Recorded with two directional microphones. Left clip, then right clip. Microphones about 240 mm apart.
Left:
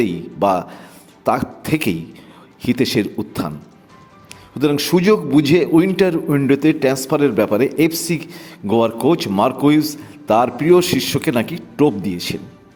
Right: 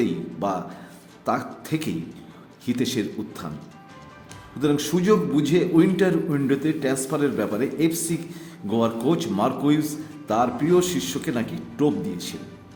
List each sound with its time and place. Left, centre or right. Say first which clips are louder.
0.0 s a sound: left 8 dB; left
1.2 s a man's voice: left 7 dB; left
4.6 s a man's voice: left 7 dB; left